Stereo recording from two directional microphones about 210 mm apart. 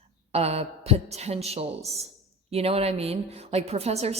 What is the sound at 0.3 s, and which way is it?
A woman's voice, 30° right (ahead or behind).